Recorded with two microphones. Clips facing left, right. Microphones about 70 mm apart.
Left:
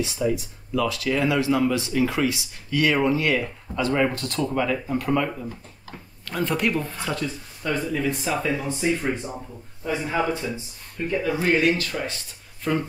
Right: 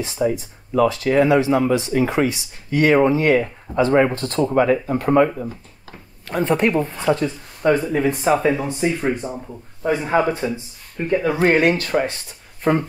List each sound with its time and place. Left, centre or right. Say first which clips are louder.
0.0 s speech: right 3 dB; right
9.8 s speech: right 6 dB; right